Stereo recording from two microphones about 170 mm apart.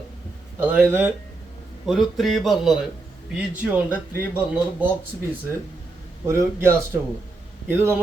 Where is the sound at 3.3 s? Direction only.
5° right (ahead or behind).